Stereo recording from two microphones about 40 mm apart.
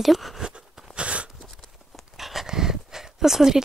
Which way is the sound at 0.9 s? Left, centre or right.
Right.